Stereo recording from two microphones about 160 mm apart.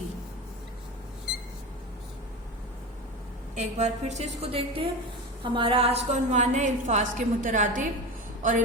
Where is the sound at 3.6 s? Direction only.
45° right (ahead or behind).